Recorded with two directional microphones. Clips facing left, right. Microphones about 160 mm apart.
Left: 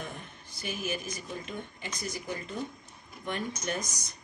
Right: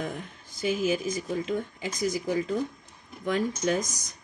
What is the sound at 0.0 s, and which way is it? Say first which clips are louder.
Speech: right 7 dB; 90° right.